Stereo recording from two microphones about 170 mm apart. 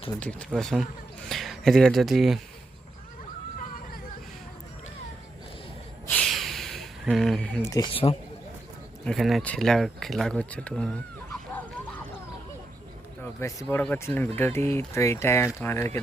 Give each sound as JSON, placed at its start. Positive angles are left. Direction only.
{"t": 0.2, "sound": "speech", "side_deg": 5}
{"t": 6.1, "sound": "a sound", "side_deg": 5}
{"t": 7.6, "sound": "speech", "side_deg": 20}
{"t": 9.0, "sound": "speech", "side_deg": 0}
{"t": 13.2, "sound": "speech", "side_deg": 15}